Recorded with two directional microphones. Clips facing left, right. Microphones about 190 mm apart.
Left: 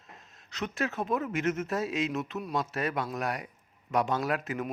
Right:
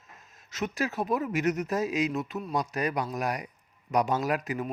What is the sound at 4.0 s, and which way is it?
Speech, 20° right (ahead or behind).